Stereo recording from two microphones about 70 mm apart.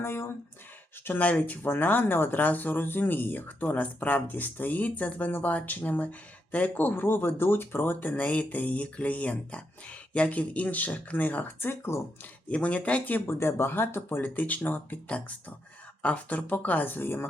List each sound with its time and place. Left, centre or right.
0.0 s a sound: left
1.0 s speech: left
12.5 s speech: centre
13.2 s speech: left